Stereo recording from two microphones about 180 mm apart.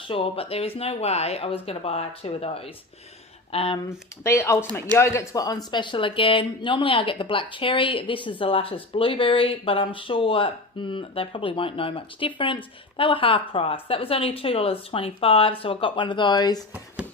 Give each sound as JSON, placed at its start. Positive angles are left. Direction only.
{"t": 0.1, "sound": "speech", "side_deg": 30}
{"t": 3.8, "sound": "speech", "side_deg": 15}